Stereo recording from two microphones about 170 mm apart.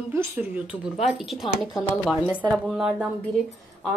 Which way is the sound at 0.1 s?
10° right (ahead or behind).